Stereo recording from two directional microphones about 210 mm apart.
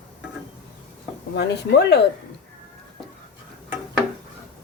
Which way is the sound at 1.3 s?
50° left (ahead or behind).